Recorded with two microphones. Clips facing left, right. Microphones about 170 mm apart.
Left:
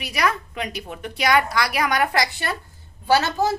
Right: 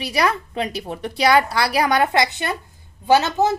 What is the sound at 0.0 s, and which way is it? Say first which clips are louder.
A woman's voice: right 3 dB; 30° right (ahead or behind).